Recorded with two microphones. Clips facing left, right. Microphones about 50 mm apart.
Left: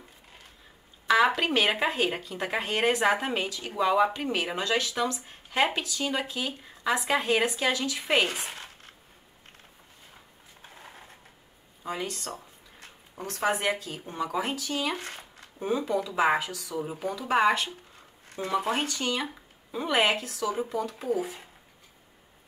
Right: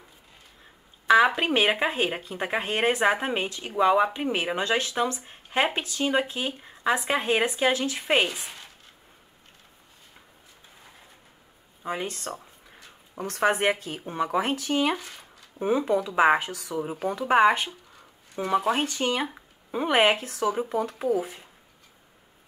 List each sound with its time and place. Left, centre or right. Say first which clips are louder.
1.0 s speech: right 3 dB; centre
3.4 s speech: right 3 dB; right
3.8 s speech: right 3 dB; centre
11.8 s speech: right 2 dB; right
13.3 s speech: right 4 dB; right
15.0 s a sound: left 3 dB; left
15.6 s speech: right 4 dB; right
17.0 s speech: right 4 dB; right
18.3 s speech: right 4 dB; right